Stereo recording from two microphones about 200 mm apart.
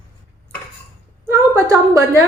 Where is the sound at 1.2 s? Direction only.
15° right (ahead or behind).